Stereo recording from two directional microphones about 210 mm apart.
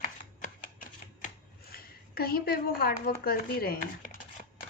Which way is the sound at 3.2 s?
45° left (ahead or behind).